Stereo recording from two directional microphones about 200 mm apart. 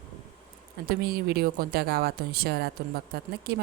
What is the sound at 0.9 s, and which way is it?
Speech, 50° right (ahead or behind).